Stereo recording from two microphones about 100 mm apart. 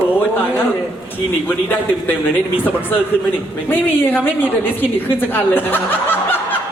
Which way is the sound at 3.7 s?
20° left (ahead or behind).